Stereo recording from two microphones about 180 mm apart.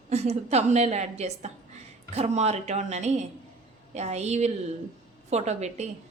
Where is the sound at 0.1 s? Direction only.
35° right (ahead or behind).